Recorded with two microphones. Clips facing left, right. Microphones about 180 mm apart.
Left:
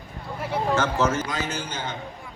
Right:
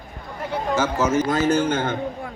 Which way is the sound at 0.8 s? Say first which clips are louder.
Right 5 dB; 5° right (ahead or behind).